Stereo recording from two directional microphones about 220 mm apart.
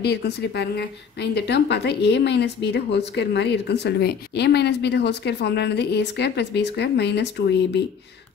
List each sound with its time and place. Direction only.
0.0 s a woman's voice: 50° left (ahead or behind)